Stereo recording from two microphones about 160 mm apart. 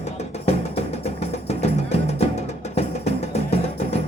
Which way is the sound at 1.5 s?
40° left (ahead or behind).